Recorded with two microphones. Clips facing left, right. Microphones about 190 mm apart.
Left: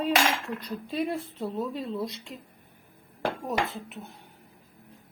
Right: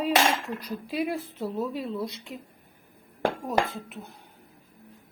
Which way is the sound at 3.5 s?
Centre (ahead or behind).